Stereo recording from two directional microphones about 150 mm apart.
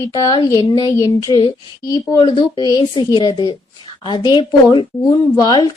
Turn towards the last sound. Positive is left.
turn(degrees=30)  # may be behind; listen again after turning